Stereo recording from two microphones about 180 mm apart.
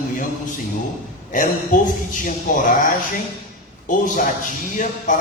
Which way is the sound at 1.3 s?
45° left (ahead or behind).